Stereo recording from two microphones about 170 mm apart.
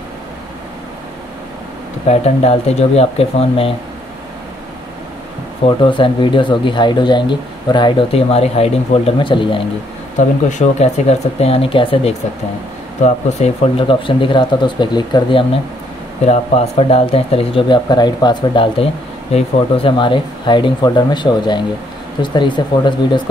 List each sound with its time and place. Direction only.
2.0 s speech: 40° left (ahead or behind)
5.9 s speech: 30° left (ahead or behind)
10.1 s speech: 40° left (ahead or behind); by 15.4 s 25° left (ahead or behind)
16.3 s speech: 35° left (ahead or behind)